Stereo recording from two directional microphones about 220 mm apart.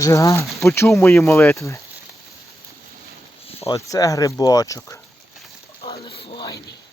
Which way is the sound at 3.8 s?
15° left (ahead or behind).